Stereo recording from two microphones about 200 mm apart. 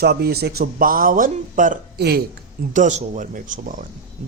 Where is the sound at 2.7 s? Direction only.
40° right (ahead or behind).